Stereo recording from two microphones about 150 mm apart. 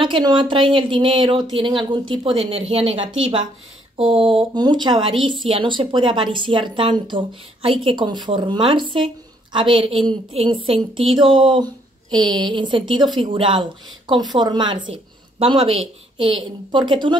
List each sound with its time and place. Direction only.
0.0 s speech: 35° right (ahead or behind)